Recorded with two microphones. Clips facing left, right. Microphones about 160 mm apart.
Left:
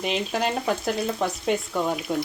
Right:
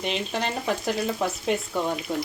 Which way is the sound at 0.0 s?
5° left (ahead or behind).